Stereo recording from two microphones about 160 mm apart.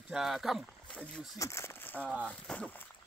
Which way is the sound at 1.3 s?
20° left (ahead or behind).